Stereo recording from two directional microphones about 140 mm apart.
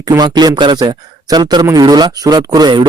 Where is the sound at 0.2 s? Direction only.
30° right (ahead or behind).